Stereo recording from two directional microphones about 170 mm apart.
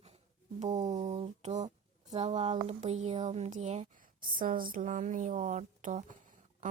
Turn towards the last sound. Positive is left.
turn(degrees=-50)  # may be behind; listen again after turning